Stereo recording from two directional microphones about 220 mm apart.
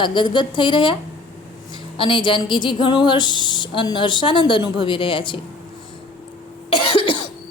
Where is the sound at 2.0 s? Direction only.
20° left (ahead or behind).